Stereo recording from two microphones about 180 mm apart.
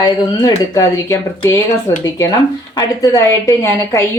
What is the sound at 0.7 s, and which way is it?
A woman's voice, 15° left (ahead or behind).